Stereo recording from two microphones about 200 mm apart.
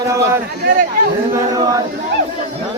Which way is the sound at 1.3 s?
15° right (ahead or behind).